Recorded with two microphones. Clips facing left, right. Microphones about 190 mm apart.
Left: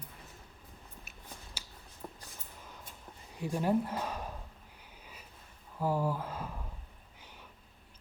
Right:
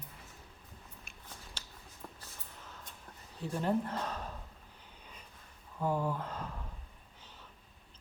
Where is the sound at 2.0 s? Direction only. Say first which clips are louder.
Left 4 dB; 20° left (ahead or behind).